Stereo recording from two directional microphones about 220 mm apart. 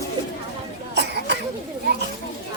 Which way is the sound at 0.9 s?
50° right (ahead or behind).